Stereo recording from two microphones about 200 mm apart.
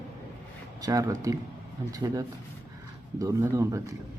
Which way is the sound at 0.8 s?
15° right (ahead or behind).